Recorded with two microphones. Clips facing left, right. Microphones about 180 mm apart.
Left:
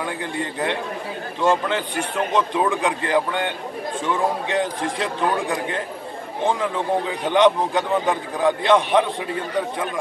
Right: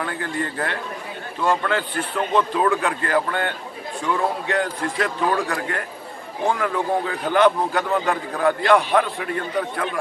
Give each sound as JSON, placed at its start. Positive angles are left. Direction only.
{"t": 0.0, "sound": "a man's voice", "side_deg": 15}